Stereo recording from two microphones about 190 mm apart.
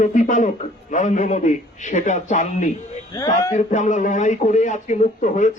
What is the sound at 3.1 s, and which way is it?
Speech, 20° left (ahead or behind).